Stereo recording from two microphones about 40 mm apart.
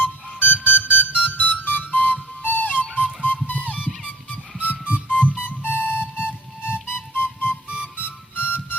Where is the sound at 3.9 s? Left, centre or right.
Centre.